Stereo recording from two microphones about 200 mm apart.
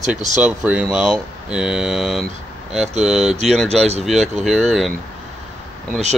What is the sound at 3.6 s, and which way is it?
Speech, 30° right (ahead or behind).